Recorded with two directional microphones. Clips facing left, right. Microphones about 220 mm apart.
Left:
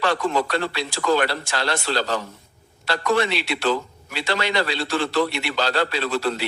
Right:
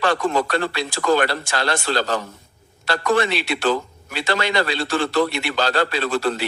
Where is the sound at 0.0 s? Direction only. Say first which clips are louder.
Right 2 dB; 45° right (ahead or behind).